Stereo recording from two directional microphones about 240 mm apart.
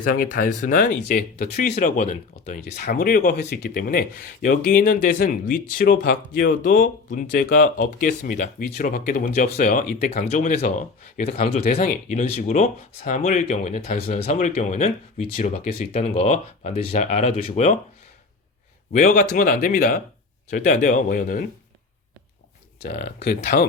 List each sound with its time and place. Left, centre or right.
0.0 s speech: left
18.9 s speech: left
22.9 s speech: left